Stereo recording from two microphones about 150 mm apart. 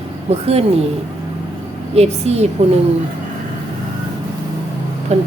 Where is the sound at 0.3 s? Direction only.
45° right (ahead or behind).